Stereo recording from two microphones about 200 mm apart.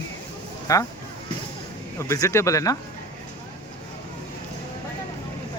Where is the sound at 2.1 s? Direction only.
15° left (ahead or behind).